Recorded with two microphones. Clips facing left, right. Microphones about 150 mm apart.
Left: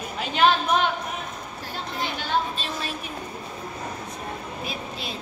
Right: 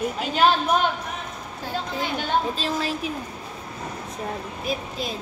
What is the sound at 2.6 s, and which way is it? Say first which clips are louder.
Speech: right 6 dB; 90° right.